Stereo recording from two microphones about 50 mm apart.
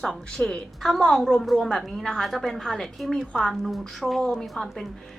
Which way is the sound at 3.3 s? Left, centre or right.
Centre.